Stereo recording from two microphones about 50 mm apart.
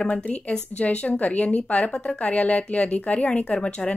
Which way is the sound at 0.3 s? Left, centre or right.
Left.